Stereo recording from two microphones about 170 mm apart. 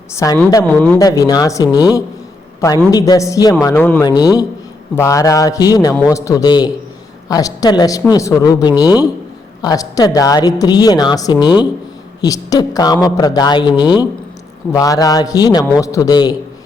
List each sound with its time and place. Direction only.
0.1 s speech: 15° left (ahead or behind)
0.9 s speech: 20° left (ahead or behind)
4.0 s speech: 25° left (ahead or behind)